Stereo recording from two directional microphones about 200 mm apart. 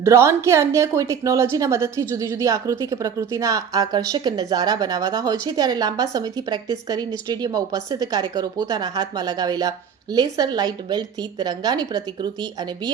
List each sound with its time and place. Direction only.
0.0 s a woman's voice: 15° right (ahead or behind)